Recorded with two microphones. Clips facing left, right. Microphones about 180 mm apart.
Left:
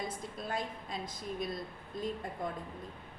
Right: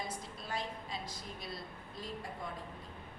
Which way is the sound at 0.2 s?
50° left (ahead or behind).